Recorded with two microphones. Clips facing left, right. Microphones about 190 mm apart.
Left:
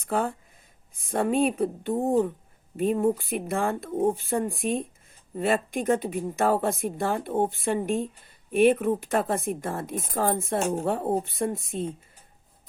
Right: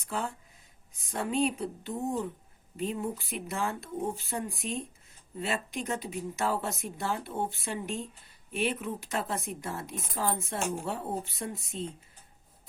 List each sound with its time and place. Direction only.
0.0 s a woman's voice: 55° left (ahead or behind)